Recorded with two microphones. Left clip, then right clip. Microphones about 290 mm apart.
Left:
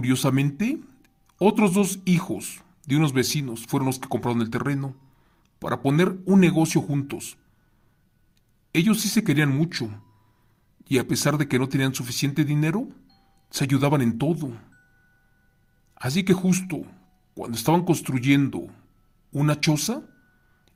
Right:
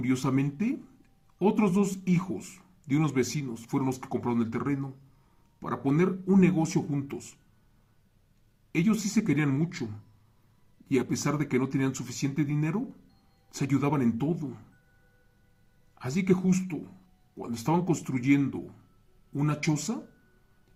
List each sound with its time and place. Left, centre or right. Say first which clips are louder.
0.0 s speech: left 5 dB; left
8.7 s speech: left 6 dB; left
16.0 s speech: left 4 dB; left